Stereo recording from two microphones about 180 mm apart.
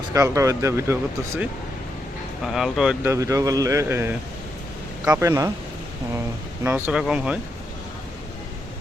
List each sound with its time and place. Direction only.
0.1 s speech: 15° right (ahead or behind)
2.4 s speech: centre (ahead or behind)
3.1 s speech: 15° right (ahead or behind)
6.7 s speech: 10° right (ahead or behind)